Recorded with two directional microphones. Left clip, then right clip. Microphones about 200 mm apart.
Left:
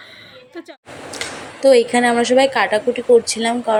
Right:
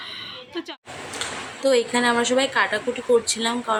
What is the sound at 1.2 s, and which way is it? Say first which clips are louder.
A woman's voice: left 7 dB; 15° left (ahead or behind).